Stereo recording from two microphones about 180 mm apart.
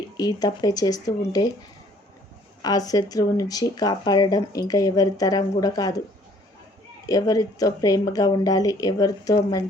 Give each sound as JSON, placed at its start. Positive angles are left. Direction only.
{"t": 0.2, "sound": "speech", "side_deg": 20}
{"t": 2.6, "sound": "speech", "side_deg": 20}
{"t": 7.1, "sound": "speech", "side_deg": 20}